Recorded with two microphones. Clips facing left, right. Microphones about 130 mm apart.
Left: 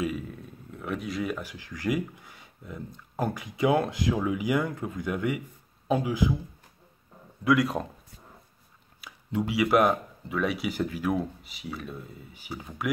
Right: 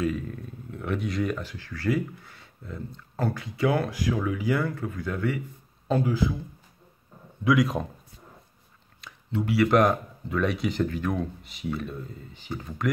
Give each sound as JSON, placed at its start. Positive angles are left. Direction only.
{"t": 0.0, "sound": "speech", "side_deg": 5}
{"t": 7.4, "sound": "speech", "side_deg": 0}
{"t": 9.0, "sound": "speech", "side_deg": 15}